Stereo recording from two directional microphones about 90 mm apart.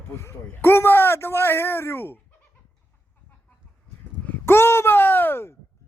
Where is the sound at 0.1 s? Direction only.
30° left (ahead or behind).